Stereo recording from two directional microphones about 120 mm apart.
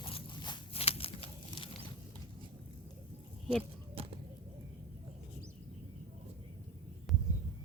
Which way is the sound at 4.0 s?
55° right (ahead or behind).